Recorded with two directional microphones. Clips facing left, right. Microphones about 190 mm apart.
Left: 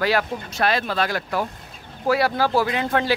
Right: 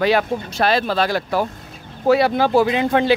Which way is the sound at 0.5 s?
30° right (ahead or behind).